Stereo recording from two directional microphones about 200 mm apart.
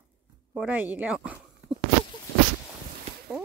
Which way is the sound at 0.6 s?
10° right (ahead or behind).